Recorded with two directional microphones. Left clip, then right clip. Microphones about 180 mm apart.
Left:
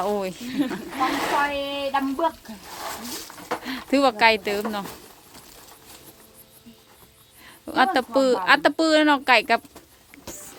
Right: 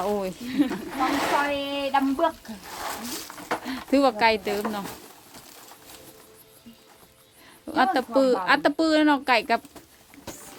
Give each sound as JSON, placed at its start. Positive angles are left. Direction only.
{"t": 0.0, "sound": "a woman's voice", "side_deg": 0}
{"t": 0.4, "sound": "speech", "side_deg": 40}
{"t": 0.7, "sound": "speech", "side_deg": -10}
{"t": 2.7, "sound": "speech", "side_deg": -5}
{"t": 7.4, "sound": "a sound", "side_deg": 0}
{"t": 7.9, "sound": "a woman's voice", "side_deg": 0}